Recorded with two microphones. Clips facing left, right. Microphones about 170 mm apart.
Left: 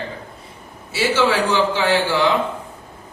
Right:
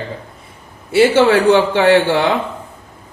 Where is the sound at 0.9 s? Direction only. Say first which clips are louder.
Right 8 dB; 60° right (ahead or behind).